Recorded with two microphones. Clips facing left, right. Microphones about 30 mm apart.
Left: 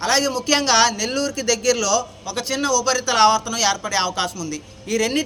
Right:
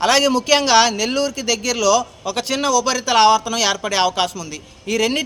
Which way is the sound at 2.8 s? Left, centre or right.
Right.